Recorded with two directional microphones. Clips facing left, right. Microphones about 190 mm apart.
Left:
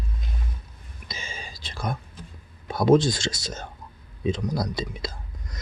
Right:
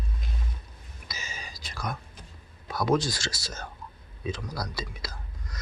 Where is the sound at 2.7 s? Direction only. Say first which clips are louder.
Left 7 dB; 25° left (ahead or behind).